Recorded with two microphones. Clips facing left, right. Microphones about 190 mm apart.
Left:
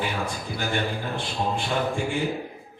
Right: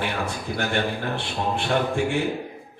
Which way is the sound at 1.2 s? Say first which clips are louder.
Right 1 dB; 65° right (ahead or behind).